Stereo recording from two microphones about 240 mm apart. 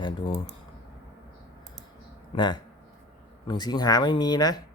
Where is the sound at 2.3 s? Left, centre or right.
Centre.